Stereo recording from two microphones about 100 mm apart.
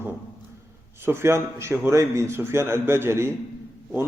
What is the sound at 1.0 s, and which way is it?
A man's voice, 25° right (ahead or behind).